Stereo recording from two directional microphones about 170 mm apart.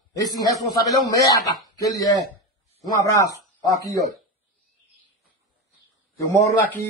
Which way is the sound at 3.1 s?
20° left (ahead or behind).